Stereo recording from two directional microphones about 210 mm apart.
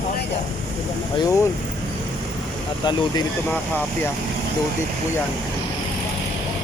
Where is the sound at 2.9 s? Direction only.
20° left (ahead or behind).